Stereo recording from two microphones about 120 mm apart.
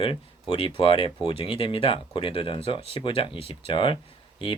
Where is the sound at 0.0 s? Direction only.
50° left (ahead or behind).